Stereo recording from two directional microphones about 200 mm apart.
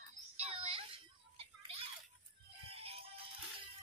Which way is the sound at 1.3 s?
30° right (ahead or behind).